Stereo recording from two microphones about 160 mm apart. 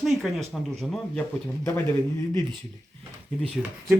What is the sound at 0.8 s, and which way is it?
Speech, centre (ahead or behind).